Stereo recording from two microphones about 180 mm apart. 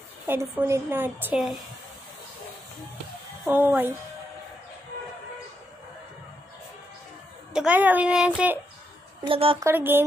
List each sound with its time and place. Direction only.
0.3 s a woman's voice: 15° right (ahead or behind)
3.4 s a woman's voice: 10° right (ahead or behind)
7.5 s a woman's voice: 5° right (ahead or behind)
9.2 s speech: 30° right (ahead or behind)
9.6 s a woman's voice: 15° right (ahead or behind)